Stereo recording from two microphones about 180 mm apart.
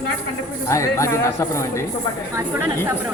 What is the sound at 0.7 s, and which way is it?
Speech, 15° left (ahead or behind).